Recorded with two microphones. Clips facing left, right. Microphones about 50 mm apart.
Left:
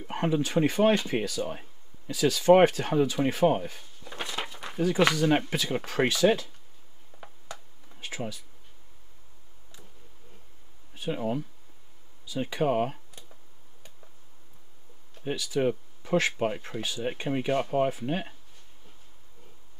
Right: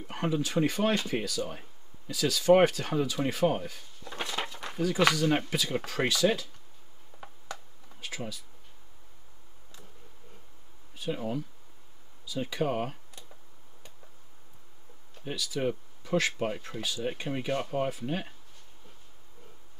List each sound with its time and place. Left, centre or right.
0.0 s speech: left
4.0 s a sound: centre
4.8 s speech: centre
7.1 s tick: left
8.0 s a sound: left
11.0 s speech: left
15.2 s speech: left